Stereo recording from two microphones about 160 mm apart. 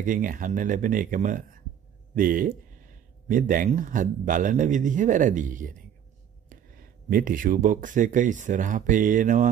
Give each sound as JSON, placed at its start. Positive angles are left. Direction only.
{"t": 0.0, "sound": "speech", "side_deg": -60}